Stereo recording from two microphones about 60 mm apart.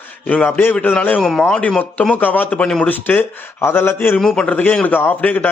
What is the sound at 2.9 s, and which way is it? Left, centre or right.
Speech, left.